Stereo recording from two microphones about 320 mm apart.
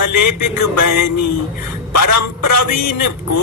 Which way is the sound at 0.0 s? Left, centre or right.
Left.